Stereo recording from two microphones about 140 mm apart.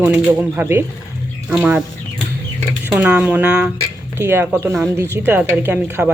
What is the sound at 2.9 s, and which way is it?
Speech, 15° right (ahead or behind).